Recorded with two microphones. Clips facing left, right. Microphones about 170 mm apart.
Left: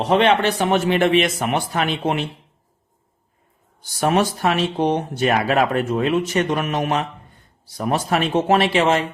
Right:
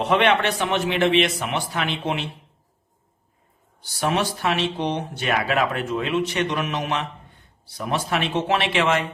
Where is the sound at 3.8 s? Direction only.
45° left (ahead or behind).